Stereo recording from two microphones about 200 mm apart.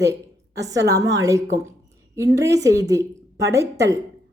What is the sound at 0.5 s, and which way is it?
A woman's voice, 15° right (ahead or behind).